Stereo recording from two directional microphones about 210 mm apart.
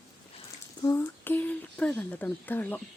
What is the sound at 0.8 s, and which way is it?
Speech, 15° left (ahead or behind).